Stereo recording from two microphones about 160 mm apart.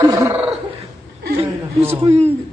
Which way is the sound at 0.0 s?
20° right (ahead or behind).